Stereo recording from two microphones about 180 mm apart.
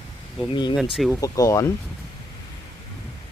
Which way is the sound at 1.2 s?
20° left (ahead or behind).